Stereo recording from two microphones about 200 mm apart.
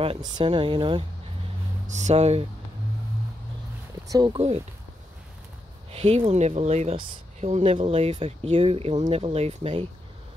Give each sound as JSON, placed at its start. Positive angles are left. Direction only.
{"t": 0.0, "sound": "speech", "side_deg": -25}
{"t": 1.9, "sound": "speech", "side_deg": -35}
{"t": 4.1, "sound": "speech", "side_deg": -20}
{"t": 5.9, "sound": "speech", "side_deg": -30}